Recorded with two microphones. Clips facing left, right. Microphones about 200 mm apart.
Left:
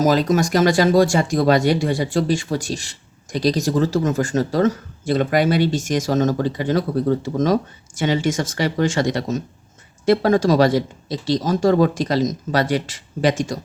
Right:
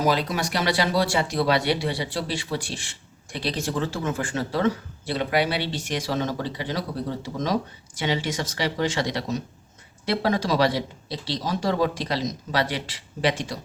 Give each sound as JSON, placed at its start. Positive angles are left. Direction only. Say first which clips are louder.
{"t": 0.0, "sound": "speech", "louder": "left 7 dB", "side_deg": 45}